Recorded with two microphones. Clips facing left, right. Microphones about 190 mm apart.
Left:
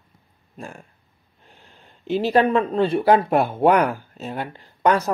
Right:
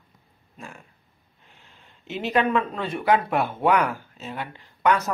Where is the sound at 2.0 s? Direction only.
35° left (ahead or behind).